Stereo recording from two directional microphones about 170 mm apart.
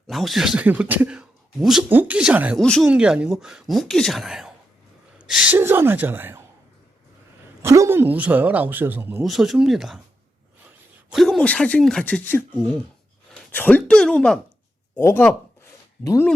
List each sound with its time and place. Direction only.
0.1 s speech: centre (ahead or behind)
2.6 s speech: 5° left (ahead or behind)
7.6 s speech: 15° right (ahead or behind)
9.2 s speech: centre (ahead or behind)
11.1 s speech: centre (ahead or behind)
13.5 s speech: 10° left (ahead or behind)